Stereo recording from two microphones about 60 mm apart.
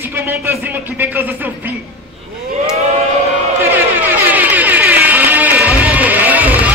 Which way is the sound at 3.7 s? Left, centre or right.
Right.